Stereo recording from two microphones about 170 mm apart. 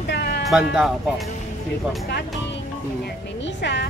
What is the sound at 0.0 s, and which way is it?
Music, 80° left.